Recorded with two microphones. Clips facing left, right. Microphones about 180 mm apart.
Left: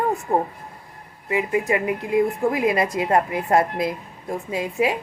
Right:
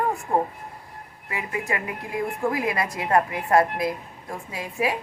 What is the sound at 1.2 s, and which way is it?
A woman's voice, 20° left (ahead or behind).